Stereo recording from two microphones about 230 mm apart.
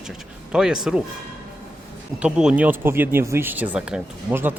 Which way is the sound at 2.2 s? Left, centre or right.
Centre.